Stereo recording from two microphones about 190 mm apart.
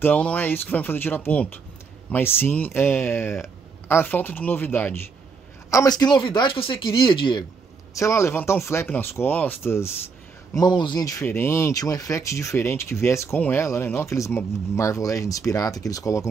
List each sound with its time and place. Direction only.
0.0 s speech: 5° left (ahead or behind)